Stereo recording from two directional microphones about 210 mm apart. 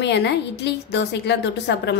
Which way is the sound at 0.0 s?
55° left (ahead or behind).